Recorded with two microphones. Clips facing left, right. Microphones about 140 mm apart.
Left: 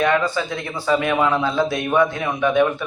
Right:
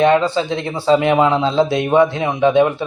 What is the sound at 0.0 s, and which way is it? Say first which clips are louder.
Speech: right 5 dB; 25° right (ahead or behind).